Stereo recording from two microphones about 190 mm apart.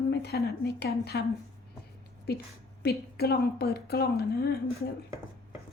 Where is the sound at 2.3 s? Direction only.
60° left (ahead or behind).